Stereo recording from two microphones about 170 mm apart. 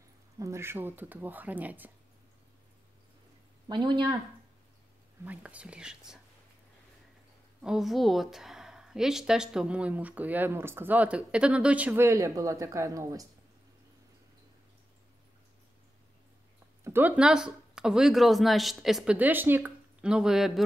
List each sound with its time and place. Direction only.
0.4 s a woman's voice: 15° right (ahead or behind)
3.6 s speech: 25° right (ahead or behind)
5.2 s a woman's voice: 10° right (ahead or behind)
7.6 s a woman's voice: centre (ahead or behind); by 13.3 s 20° right (ahead or behind)
16.8 s speech: 10° right (ahead or behind)